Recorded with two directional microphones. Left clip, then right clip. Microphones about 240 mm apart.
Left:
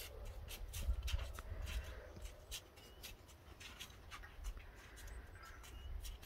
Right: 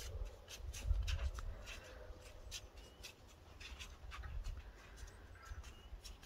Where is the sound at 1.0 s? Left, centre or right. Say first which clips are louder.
Right 1 dB; left.